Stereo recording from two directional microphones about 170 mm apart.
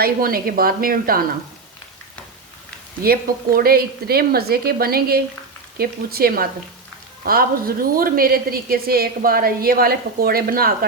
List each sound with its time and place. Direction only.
0.0 s a woman's voice: 60° right (ahead or behind)
3.0 s a woman's voice: 60° right (ahead or behind)